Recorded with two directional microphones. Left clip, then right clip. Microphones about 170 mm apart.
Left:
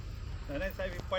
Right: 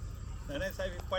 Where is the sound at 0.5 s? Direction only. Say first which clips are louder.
Even; 15° left (ahead or behind).